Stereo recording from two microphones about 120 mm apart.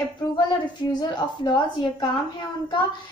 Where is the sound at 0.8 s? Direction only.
40° left (ahead or behind).